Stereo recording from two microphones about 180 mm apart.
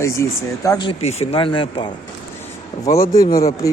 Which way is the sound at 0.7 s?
25° left (ahead or behind).